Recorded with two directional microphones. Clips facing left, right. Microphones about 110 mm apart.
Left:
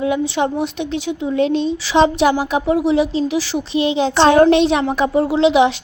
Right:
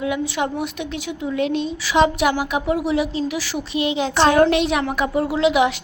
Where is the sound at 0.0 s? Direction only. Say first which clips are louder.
Left 5 dB; 30° left (ahead or behind).